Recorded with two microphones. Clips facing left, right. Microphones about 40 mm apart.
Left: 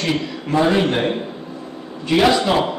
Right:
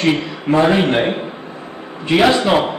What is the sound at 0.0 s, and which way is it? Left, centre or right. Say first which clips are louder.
A man's voice: right 5 dB; right.